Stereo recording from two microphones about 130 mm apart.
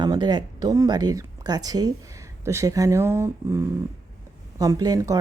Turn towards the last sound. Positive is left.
turn(degrees=-25)  # may be behind; listen again after turning